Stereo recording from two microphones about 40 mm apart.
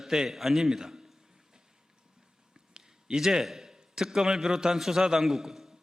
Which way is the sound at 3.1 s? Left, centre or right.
Centre.